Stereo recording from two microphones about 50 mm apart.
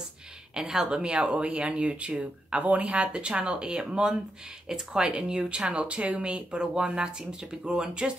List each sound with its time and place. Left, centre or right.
0.6 s speech: centre